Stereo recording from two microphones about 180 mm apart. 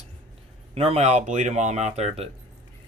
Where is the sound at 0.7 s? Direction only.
35° right (ahead or behind).